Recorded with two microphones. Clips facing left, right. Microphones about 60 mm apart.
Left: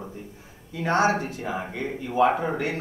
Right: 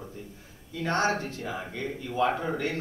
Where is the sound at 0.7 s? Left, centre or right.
Centre.